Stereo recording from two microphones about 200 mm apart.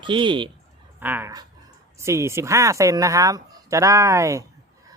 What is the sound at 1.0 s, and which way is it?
Speech, 10° right (ahead or behind).